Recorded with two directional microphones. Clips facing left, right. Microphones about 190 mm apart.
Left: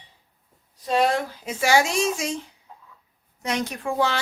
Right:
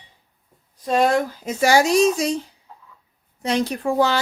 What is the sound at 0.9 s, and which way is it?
Speech, 45° right (ahead or behind).